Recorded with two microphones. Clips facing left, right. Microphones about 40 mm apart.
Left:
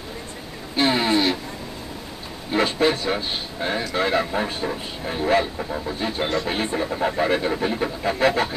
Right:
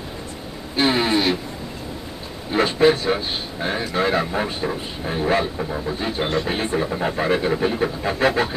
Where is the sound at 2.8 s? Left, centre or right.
Right.